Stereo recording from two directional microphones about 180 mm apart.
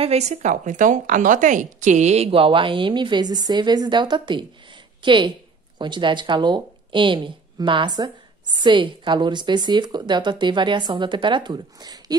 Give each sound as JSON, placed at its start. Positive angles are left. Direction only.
{"t": 0.0, "sound": "a woman's voice", "side_deg": -35}